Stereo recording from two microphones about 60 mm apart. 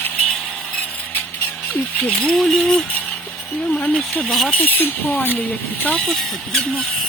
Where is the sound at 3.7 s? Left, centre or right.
Left.